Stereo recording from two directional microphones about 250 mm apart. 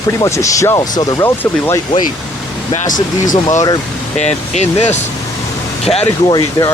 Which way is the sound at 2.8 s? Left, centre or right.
Left.